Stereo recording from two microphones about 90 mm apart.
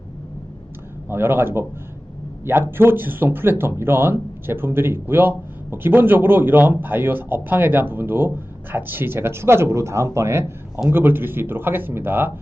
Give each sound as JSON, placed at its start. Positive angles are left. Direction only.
{"t": 1.1, "sound": "speech", "side_deg": -25}